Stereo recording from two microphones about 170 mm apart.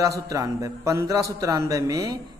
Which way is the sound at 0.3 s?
20° right (ahead or behind).